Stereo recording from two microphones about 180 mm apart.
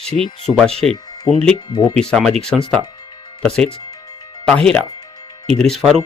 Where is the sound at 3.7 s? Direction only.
25° left (ahead or behind).